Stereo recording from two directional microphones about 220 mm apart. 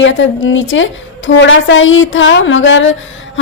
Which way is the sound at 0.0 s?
60° left (ahead or behind).